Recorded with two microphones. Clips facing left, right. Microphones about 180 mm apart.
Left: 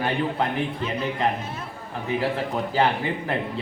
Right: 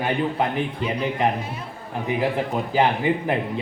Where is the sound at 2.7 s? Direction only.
15° right (ahead or behind).